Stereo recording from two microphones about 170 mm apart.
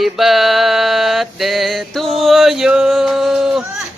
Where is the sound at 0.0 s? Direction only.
Centre (ahead or behind).